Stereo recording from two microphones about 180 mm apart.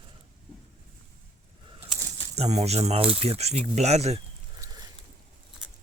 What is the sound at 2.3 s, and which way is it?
Speech, 35° right (ahead or behind).